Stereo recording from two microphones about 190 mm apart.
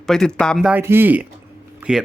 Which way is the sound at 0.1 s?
5° left (ahead or behind).